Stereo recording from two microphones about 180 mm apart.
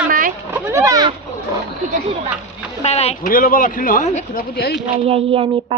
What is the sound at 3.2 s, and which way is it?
Speech, 50° left (ahead or behind).